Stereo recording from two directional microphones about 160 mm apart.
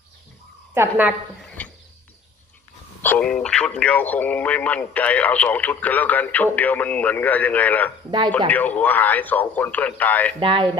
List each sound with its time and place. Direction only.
0.7 s a woman's voice: 10° right (ahead or behind)
1.4 s a sound: 10° left (ahead or behind)
3.0 s speech: 10° left (ahead or behind)
10.4 s speech: 35° right (ahead or behind)